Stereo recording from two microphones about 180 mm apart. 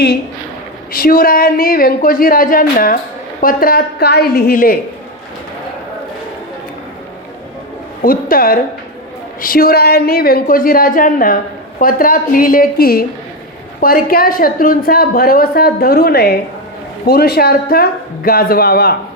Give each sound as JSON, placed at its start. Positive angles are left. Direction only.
{"t": 0.9, "sound": "speech", "side_deg": 50}
{"t": 8.0, "sound": "speech", "side_deg": 55}